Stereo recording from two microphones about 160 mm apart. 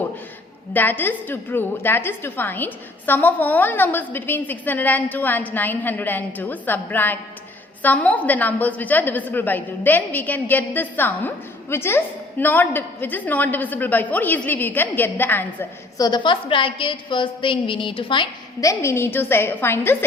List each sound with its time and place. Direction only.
0.7 s a woman's voice: 10° left (ahead or behind)
16.0 s a woman's voice: 25° left (ahead or behind)